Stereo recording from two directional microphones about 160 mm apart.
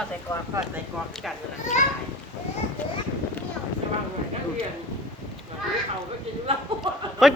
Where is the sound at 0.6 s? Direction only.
20° right (ahead or behind).